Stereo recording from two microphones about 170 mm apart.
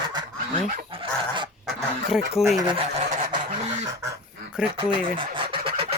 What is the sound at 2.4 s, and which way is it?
Speech, centre (ahead or behind).